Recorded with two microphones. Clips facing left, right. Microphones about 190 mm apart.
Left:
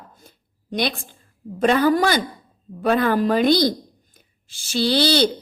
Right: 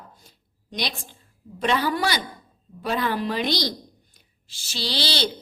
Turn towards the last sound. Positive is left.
turn(degrees=50)  # may be behind; listen again after turning